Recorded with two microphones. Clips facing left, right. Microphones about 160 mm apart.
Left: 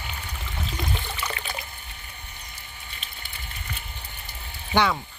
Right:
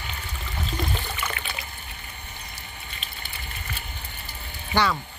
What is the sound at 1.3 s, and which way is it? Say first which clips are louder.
Trickle: left 1 dB; 40° left (ahead or behind).